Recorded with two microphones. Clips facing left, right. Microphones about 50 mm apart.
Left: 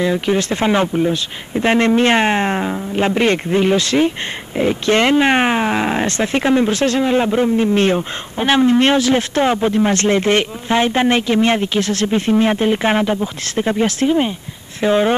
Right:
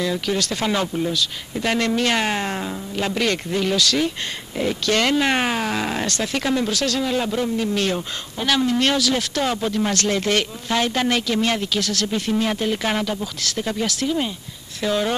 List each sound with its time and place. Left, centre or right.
0.0 s speech: left